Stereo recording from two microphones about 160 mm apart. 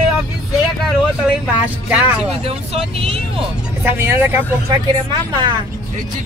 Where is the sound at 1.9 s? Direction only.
5° right (ahead or behind).